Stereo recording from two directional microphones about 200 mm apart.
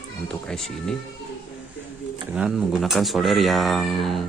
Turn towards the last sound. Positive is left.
turn(degrees=0)  # may be behind; listen again after turning